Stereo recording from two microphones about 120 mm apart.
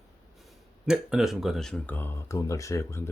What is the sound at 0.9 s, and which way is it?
Speech, 5° right (ahead or behind).